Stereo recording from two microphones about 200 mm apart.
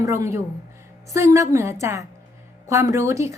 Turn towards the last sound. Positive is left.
turn(degrees=-15)  # may be behind; listen again after turning